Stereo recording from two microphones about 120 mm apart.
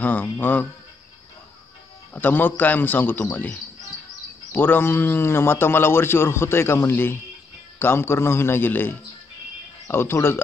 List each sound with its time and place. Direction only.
0.0 s a man's voice: 15° left (ahead or behind)
2.1 s a man's voice: 15° left (ahead or behind)